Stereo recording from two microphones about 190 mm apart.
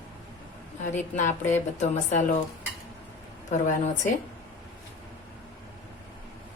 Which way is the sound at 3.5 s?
40° left (ahead or behind).